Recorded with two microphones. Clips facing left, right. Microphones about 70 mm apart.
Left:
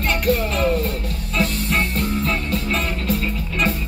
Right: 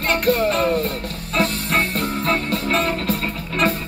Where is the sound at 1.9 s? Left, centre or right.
Right.